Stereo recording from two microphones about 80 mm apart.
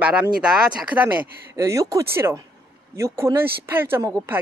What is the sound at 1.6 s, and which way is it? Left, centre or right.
Speech, right.